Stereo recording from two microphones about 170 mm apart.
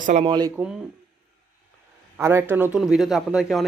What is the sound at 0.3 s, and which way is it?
Speech, 25° right (ahead or behind).